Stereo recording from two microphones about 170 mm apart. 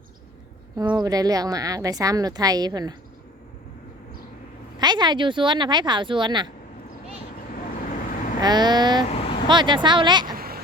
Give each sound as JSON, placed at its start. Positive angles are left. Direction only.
{"t": 0.8, "sound": "a woman's voice", "side_deg": -25}
{"t": 4.8, "sound": "a woman's voice", "side_deg": -25}
{"t": 7.8, "sound": "vehicle", "side_deg": 50}
{"t": 8.4, "sound": "a woman's voice", "side_deg": -25}
{"t": 9.0, "sound": "vehicle", "side_deg": 35}
{"t": 9.5, "sound": "a woman's voice", "side_deg": -25}
{"t": 10.3, "sound": "a sound", "side_deg": -60}